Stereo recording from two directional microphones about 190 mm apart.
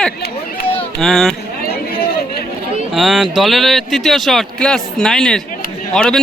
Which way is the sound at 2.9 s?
5° right (ahead or behind).